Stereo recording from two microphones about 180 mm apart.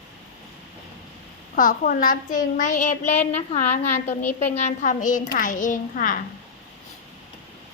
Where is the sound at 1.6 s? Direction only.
50° left (ahead or behind).